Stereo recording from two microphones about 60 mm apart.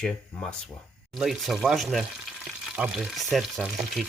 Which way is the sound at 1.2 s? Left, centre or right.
Centre.